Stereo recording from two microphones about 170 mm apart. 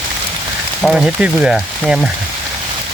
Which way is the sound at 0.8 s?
5° right (ahead or behind).